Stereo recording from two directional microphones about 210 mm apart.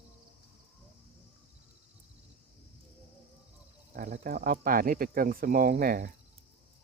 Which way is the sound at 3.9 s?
35° right (ahead or behind).